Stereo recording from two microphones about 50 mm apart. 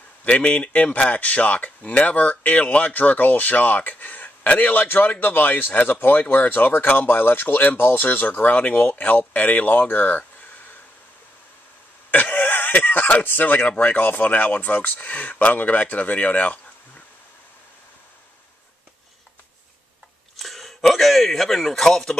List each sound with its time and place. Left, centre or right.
0.2 s speech: left
8.5 s speech: left
12.1 s speech: left
20.3 s a sound: centre